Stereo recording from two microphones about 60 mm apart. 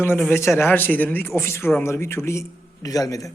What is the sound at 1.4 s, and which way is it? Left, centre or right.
A man's voice, left.